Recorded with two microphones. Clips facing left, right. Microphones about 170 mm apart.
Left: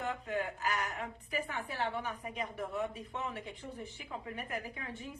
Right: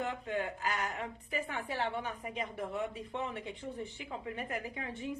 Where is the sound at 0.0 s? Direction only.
25° right (ahead or behind).